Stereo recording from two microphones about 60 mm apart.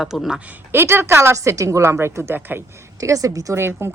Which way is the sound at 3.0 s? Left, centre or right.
Right.